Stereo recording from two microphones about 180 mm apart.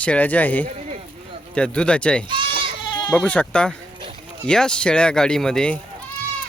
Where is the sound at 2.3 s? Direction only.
25° right (ahead or behind).